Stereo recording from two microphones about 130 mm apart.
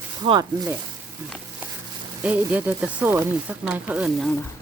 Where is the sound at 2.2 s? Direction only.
10° right (ahead or behind).